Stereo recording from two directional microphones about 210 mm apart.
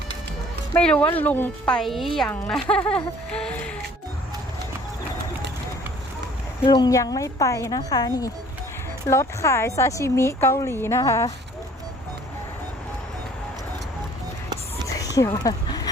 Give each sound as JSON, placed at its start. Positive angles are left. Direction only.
{"t": 0.7, "sound": "a woman's voice", "side_deg": 5}
{"t": 6.7, "sound": "speech", "side_deg": 20}
{"t": 14.8, "sound": "a sound", "side_deg": 15}